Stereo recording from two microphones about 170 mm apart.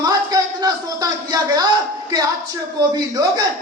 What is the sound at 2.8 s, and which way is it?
Speech, 20° right (ahead or behind).